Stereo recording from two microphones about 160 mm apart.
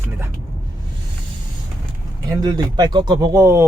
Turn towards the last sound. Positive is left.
turn(degrees=-15)  # may be behind; listen again after turning